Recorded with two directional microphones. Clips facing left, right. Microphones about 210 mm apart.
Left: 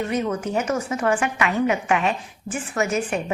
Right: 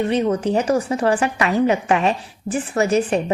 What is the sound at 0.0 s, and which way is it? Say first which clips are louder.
A woman's voice: right 5 dB; 30° right (ahead or behind).